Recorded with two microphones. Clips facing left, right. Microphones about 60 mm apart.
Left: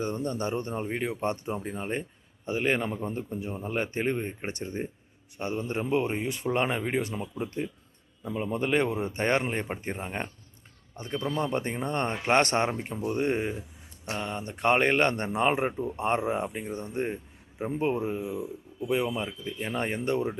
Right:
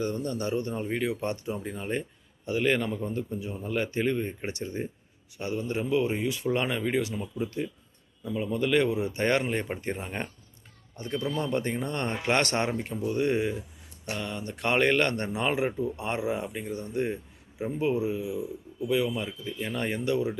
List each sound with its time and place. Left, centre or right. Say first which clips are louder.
0.0 s speech: even; left
8.2 s speech: right 1 dB; left
12.7 s speech: right 2 dB; centre
13.1 s speech: right 1 dB; left
16.5 s speech: even; left
17.7 s speech: right 1 dB; left